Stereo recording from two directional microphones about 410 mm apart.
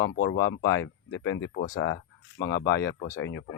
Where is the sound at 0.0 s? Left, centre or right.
Left.